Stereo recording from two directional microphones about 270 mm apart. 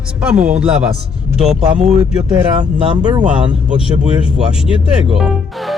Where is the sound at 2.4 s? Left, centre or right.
Centre.